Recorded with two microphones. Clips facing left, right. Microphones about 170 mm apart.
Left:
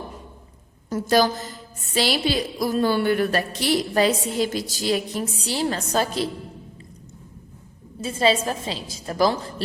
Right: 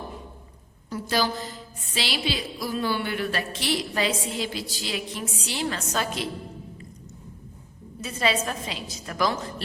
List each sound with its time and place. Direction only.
0.9 s a woman's voice: 45° left (ahead or behind)
8.0 s a woman's voice: 30° left (ahead or behind)